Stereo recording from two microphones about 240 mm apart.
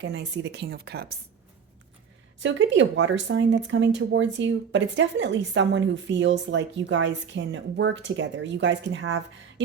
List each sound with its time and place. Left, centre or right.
0.0 s speech: right
2.4 s speech: right